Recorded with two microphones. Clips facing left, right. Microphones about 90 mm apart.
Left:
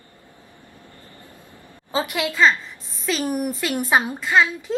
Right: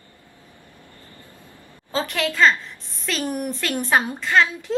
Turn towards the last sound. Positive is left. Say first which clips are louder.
# even
turn(degrees=5)  # may be behind; listen again after turning